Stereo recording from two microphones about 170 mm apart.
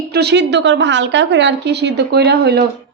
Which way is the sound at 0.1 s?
80° right.